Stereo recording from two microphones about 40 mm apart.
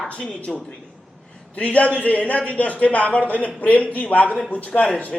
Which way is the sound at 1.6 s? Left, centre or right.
Left.